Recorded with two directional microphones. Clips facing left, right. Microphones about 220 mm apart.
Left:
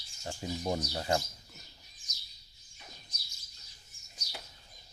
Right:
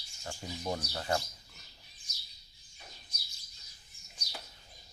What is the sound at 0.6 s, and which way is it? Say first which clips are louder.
Speech: left 2 dB; 25° left (ahead or behind).